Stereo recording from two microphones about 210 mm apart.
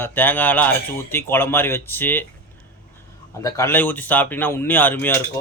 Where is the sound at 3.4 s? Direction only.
15° left (ahead or behind).